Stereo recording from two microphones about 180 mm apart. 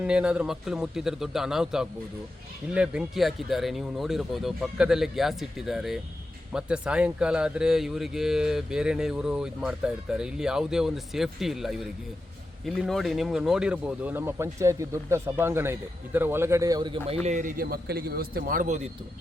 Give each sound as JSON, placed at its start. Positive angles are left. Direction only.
{"t": 0.0, "sound": "speech", "side_deg": -5}
{"t": 17.2, "sound": "a man's voice", "side_deg": -45}